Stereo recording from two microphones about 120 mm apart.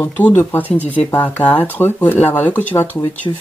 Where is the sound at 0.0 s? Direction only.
15° left (ahead or behind).